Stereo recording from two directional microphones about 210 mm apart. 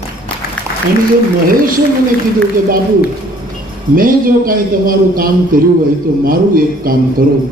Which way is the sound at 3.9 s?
40° right (ahead or behind).